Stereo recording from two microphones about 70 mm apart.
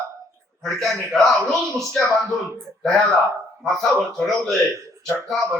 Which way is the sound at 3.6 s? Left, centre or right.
Centre.